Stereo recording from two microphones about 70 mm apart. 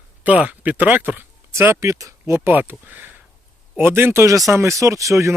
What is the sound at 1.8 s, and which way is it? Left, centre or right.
Speech, right.